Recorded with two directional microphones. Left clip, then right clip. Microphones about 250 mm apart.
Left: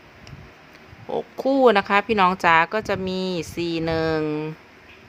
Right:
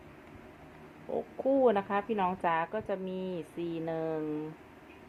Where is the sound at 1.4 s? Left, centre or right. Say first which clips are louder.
Left 10 dB; left.